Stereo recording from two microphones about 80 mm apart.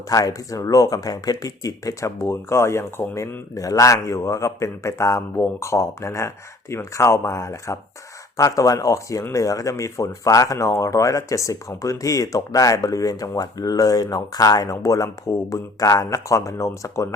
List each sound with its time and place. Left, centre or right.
0.1 s speech: left